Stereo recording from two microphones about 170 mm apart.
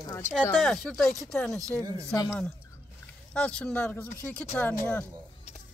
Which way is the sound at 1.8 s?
20° right (ahead or behind).